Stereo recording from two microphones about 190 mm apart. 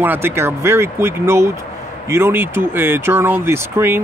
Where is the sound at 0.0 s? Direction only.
10° right (ahead or behind).